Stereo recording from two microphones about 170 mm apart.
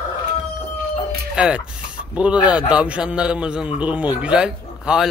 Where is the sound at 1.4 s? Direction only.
5° right (ahead or behind).